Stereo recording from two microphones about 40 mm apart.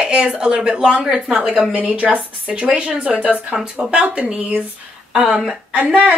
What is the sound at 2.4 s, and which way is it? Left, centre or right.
Speech, centre.